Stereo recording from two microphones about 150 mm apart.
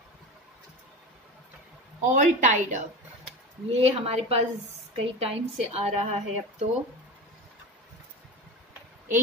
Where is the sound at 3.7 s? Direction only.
40° right (ahead or behind).